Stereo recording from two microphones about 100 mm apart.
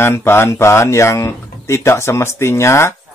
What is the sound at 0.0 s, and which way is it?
Speech, 25° left (ahead or behind).